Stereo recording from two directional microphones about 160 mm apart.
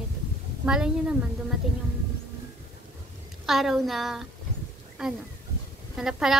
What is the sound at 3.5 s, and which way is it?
A woman's voice, centre (ahead or behind).